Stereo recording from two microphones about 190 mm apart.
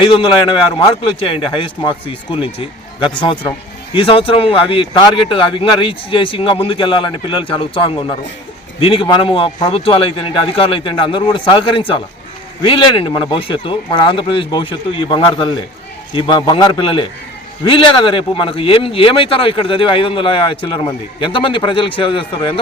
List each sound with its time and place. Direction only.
0.0 s speech: 25° left (ahead or behind)
1.3 s speech: 25° left (ahead or behind)